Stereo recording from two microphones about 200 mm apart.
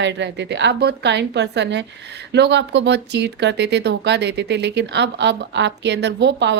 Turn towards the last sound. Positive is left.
turn(degrees=-60)  # may be behind; listen again after turning